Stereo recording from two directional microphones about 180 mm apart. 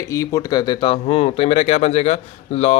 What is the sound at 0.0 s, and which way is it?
Speech, 15° left (ahead or behind).